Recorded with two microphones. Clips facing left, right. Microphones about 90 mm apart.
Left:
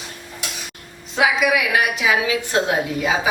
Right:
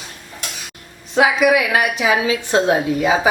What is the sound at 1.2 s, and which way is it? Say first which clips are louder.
A woman's voice: right 4 dB; 30° right (ahead or behind).